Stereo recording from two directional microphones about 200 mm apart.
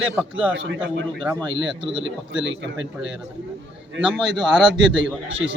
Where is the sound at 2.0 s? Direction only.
70° right (ahead or behind).